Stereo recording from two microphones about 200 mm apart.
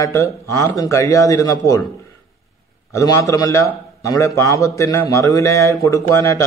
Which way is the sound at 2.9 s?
15° left (ahead or behind).